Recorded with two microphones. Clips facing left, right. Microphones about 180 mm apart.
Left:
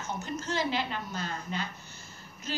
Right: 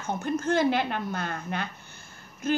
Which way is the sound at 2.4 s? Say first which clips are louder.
Right 9 dB; 55° right (ahead or behind).